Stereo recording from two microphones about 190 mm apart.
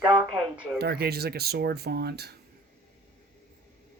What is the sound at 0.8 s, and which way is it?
Speech, 55° right (ahead or behind).